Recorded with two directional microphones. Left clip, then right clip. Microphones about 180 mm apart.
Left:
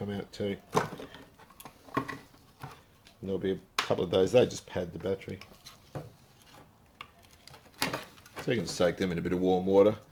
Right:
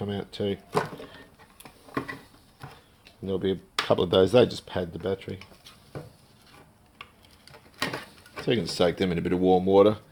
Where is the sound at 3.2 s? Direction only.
35° right (ahead or behind).